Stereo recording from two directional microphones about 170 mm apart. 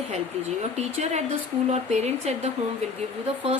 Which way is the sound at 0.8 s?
40° right (ahead or behind).